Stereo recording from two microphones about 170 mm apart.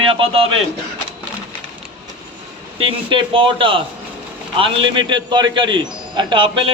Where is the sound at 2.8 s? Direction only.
30° right (ahead or behind).